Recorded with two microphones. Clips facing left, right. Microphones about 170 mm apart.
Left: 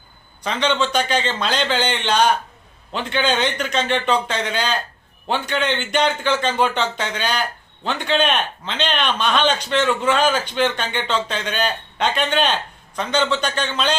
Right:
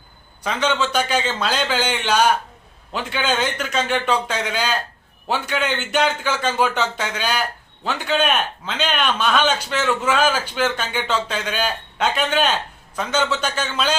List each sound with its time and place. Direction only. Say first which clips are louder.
0.4 s a man's voice: left 1 dB; 5° right (ahead or behind)